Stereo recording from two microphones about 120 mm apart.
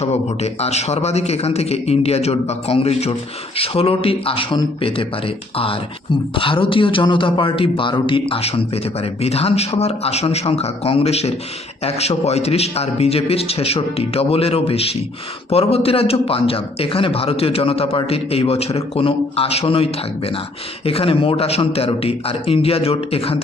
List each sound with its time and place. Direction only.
0.0 s a man's voice: 65° left (ahead or behind)
6.3 s a man's voice: 45° left (ahead or behind)